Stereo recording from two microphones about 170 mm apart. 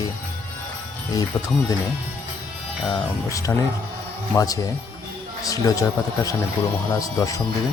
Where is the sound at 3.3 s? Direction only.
20° left (ahead or behind).